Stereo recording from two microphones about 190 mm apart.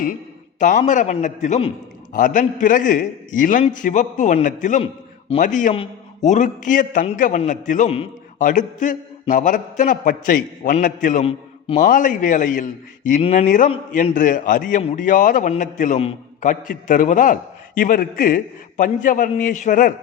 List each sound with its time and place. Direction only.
0.6 s a man's voice: 40° left (ahead or behind)
11.3 s a sound: 30° left (ahead or behind)
11.8 s a man's voice: 45° left (ahead or behind)